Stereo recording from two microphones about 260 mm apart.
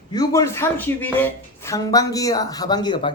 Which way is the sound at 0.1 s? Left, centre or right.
Centre.